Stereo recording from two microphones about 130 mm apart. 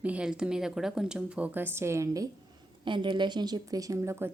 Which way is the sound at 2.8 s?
35° right (ahead or behind).